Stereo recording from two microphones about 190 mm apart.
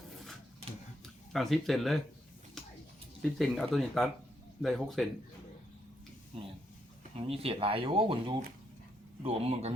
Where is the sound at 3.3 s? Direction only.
Centre (ahead or behind).